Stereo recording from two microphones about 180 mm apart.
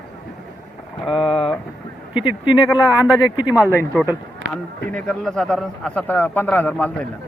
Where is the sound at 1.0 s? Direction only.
Centre (ahead or behind).